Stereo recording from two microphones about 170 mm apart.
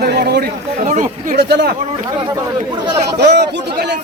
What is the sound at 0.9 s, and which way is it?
Speech, 45° right (ahead or behind).